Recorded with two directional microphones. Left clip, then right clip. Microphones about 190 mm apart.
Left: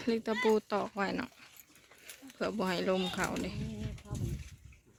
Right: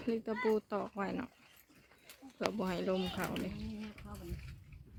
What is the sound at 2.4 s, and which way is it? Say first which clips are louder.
Speech: left 3 dB; 15° left (ahead or behind).